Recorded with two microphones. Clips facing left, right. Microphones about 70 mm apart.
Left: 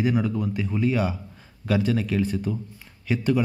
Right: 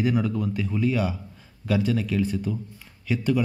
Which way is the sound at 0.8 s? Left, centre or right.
Left.